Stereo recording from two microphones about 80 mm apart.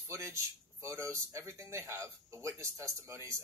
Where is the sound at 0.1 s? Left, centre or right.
Right.